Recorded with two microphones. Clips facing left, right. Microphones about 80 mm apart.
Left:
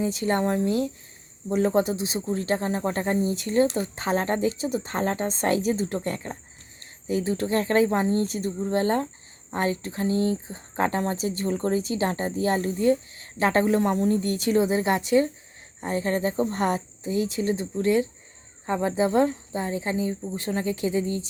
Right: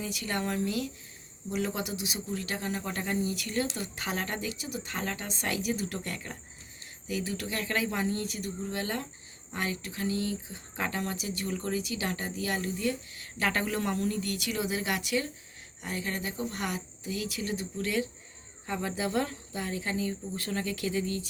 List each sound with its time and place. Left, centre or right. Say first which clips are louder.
0.0 s speech: left 9 dB; left